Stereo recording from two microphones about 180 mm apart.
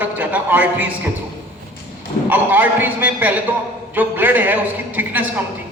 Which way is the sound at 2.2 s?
10° right (ahead or behind).